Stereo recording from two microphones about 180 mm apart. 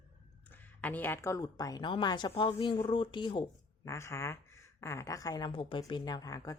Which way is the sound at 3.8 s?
15° left (ahead or behind).